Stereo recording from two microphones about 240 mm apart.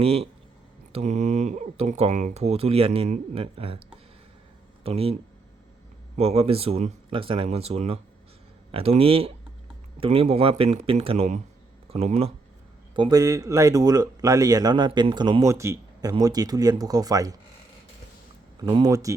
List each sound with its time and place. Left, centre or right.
0.0 s speech: right
4.8 s speech: right
6.1 s speech: right
18.6 s speech: centre